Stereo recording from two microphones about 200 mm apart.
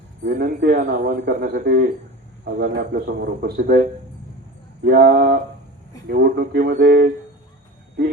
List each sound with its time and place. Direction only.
0.3 s speech: 50° right (ahead or behind)